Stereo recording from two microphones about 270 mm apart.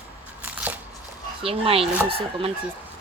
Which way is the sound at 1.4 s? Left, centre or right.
Right.